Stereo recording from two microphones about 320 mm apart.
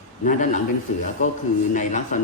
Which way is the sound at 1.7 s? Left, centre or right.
Left.